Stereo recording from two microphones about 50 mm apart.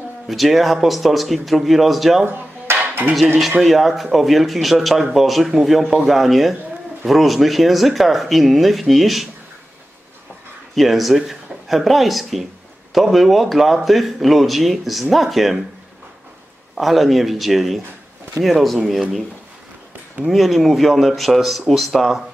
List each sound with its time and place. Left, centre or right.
0.3 s speech: centre
2.2 s dishes: right
3.6 s speech: centre
10.7 s speech: centre
16.7 s speech: centre
20.2 s speech: centre